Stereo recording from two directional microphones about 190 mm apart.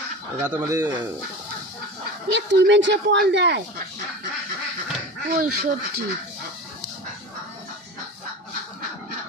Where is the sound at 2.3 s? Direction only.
65° right (ahead or behind).